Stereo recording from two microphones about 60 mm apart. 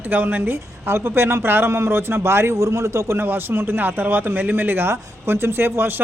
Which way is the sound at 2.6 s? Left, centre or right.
Right.